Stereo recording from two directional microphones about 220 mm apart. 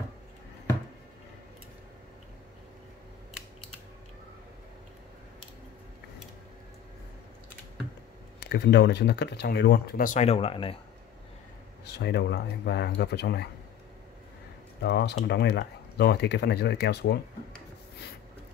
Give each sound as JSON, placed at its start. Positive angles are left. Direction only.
{"t": 8.5, "sound": "speech", "side_deg": 50}
{"t": 11.8, "sound": "speech", "side_deg": 50}
{"t": 14.8, "sound": "speech", "side_deg": 50}